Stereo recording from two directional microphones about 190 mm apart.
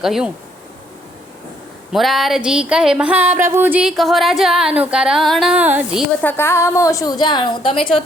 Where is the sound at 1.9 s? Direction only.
Centre (ahead or behind).